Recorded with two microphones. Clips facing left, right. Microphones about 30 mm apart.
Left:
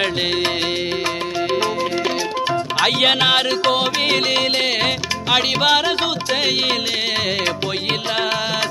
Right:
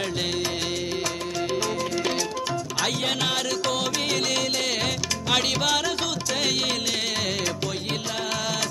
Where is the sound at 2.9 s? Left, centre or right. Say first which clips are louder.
Left 12 dB; left.